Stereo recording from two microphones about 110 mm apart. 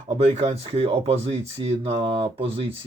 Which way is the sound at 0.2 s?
75° right (ahead or behind).